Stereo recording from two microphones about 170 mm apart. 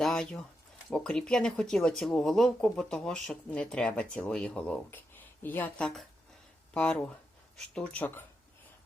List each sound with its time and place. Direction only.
0.0 s bird: 5° left (ahead or behind)
0.9 s speech: 5° left (ahead or behind)